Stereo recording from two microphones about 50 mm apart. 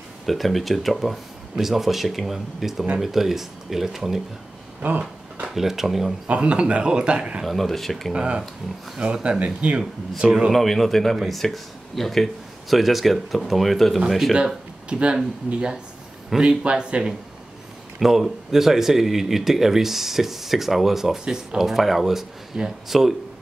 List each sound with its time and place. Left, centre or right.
0.3 s speech: centre
4.8 s a sound: right
5.5 s speech: centre
6.2 s speech: right
7.4 s speech: centre
8.1 s speech: centre
10.5 s speech: centre
14.3 s speech: centre
16.3 s speech: centre
17.9 s speech: centre
21.2 s speech: centre
21.5 s speech: centre